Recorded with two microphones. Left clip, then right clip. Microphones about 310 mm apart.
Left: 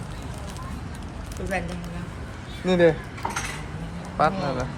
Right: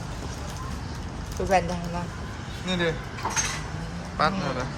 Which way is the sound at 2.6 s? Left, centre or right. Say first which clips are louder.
Left 8 dB; centre.